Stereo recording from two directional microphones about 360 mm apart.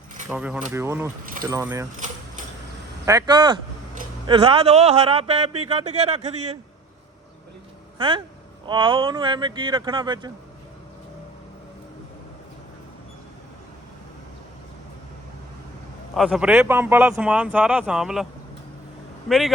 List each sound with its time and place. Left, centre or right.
0.3 s speech: centre
1.2 s speech: right
1.5 s speech: centre
3.1 s speech: centre
7.9 s speech: centre
16.1 s speech: centre